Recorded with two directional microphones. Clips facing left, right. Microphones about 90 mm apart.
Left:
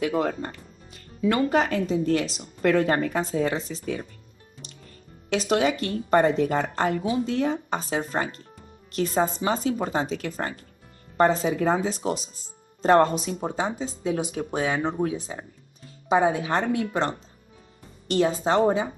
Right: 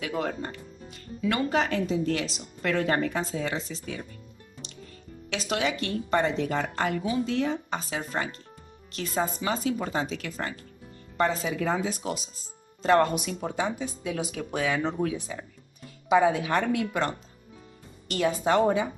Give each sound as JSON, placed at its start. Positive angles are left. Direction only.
{"t": 0.0, "sound": "speech", "side_deg": 35}
{"t": 5.3, "sound": "speech", "side_deg": 40}